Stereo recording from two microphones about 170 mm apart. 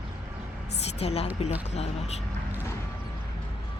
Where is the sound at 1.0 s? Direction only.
40° left (ahead or behind).